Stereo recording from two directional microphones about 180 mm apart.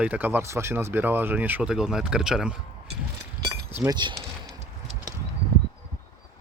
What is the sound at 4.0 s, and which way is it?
Speech, 25° right (ahead or behind).